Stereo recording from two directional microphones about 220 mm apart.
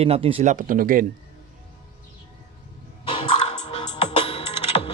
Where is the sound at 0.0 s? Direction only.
25° right (ahead or behind).